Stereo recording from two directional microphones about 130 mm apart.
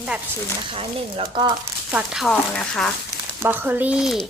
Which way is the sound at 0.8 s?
35° right (ahead or behind).